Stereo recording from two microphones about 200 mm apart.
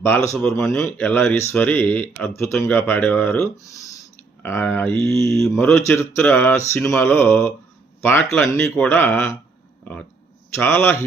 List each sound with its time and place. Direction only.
0.0 s speech: 10° left (ahead or behind)
10.6 s speech: 10° left (ahead or behind)